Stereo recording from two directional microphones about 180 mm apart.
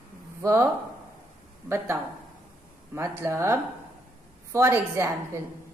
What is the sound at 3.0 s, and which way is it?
A woman's voice, 15° right (ahead or behind).